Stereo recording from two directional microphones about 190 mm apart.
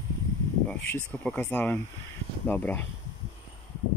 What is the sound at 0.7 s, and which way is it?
Speech, 5° left (ahead or behind).